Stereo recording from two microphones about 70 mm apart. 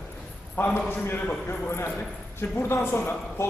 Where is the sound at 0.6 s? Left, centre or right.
Left.